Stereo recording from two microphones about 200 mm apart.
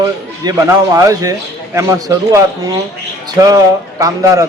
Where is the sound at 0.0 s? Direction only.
20° right (ahead or behind).